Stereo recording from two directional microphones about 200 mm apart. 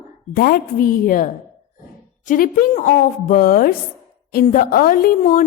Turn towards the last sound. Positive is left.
turn(degrees=45)  # may be behind; listen again after turning